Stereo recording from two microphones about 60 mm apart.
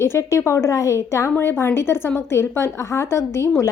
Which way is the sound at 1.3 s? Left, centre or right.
Left.